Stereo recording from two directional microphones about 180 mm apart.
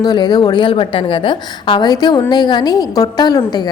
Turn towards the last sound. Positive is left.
turn(degrees=25)  # may be behind; listen again after turning